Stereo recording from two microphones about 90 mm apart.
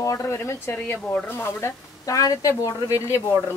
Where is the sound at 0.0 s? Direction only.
35° left (ahead or behind).